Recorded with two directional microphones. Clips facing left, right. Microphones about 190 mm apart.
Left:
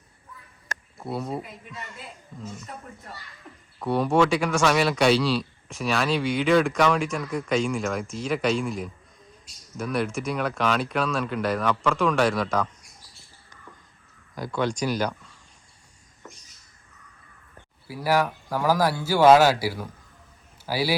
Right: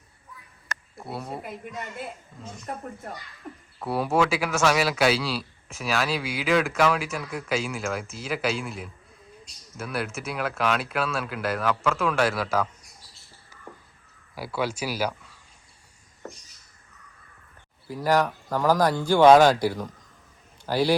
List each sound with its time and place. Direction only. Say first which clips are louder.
0.9 s speech: left 4 dB; centre (ahead or behind)
1.4 s a woman's voice: right 2 dB; 55° right (ahead or behind)
2.3 s speech: left 5 dB; centre (ahead or behind)
2.7 s a child's voice: right 6 dB; 55° right (ahead or behind)
3.8 s speech: left 3 dB; 5° right (ahead or behind)
14.3 s speech: left 2 dB; 5° right (ahead or behind)
17.8 s speech: right 1 dB; 10° left (ahead or behind)